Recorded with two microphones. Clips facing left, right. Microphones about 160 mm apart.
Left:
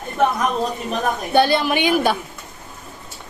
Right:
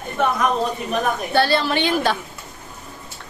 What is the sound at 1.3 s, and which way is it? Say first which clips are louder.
Speech: left 3 dB; 15° left (ahead or behind).